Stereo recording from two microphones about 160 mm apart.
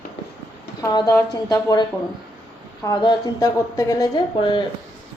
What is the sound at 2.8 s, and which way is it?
A woman's voice, 20° left (ahead or behind).